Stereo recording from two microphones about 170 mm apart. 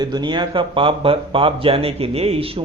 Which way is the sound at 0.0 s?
25° right (ahead or behind).